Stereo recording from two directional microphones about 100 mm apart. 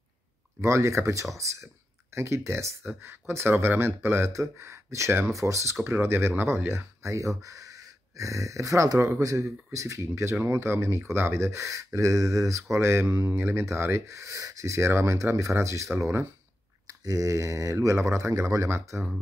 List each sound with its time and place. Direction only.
0.6 s speech: 30° right (ahead or behind)